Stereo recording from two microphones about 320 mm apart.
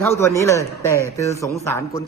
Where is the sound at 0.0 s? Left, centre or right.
Centre.